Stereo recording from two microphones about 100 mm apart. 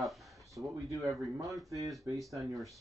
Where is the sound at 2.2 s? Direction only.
35° right (ahead or behind).